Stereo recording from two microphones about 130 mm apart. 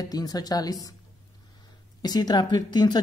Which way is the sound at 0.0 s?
30° left (ahead or behind).